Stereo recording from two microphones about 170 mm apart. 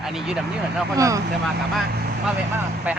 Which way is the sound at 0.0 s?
Centre (ahead or behind).